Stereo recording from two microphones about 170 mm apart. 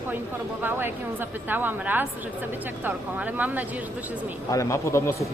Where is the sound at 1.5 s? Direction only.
10° right (ahead or behind).